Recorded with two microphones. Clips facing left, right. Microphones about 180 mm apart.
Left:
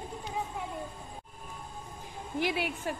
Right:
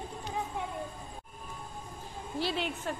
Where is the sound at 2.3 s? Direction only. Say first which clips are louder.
Left 2 dB; 10° left (ahead or behind).